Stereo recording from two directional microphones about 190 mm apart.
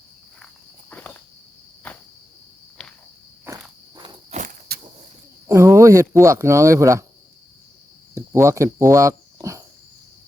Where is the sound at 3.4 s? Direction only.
20° right (ahead or behind).